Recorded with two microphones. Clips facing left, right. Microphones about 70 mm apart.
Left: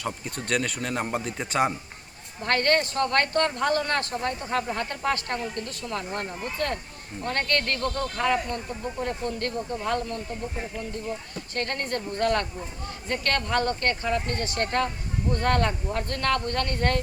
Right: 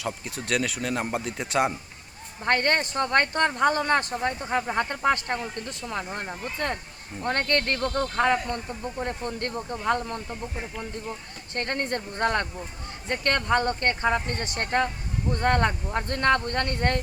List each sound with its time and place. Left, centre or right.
0.0 s a man's voice: centre
2.4 s speech: right
11.5 s speech: right